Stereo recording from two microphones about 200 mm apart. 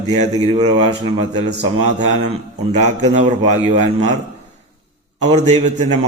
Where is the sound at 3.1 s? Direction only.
35° right (ahead or behind).